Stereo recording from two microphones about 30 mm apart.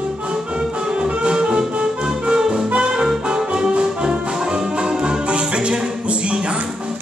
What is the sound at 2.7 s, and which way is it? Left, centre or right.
Brass instrument, right.